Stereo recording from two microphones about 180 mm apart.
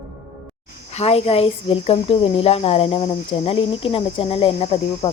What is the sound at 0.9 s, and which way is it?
Speech, 35° left (ahead or behind).